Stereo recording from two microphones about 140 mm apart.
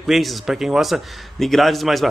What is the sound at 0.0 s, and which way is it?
A man's voice, centre (ahead or behind).